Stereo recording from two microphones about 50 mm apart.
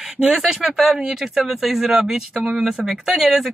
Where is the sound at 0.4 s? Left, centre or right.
Centre.